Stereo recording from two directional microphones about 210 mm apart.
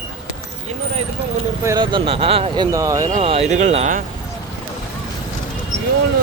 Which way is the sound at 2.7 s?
15° right (ahead or behind).